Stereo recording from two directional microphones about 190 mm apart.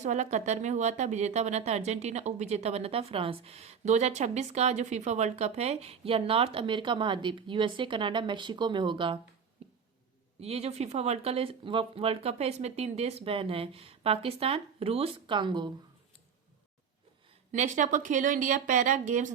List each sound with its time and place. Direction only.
0.0 s speech: 40° right (ahead or behind)
9.6 s a sound: 30° right (ahead or behind)
10.4 s speech: 35° right (ahead or behind)
17.5 s speech: 40° right (ahead or behind)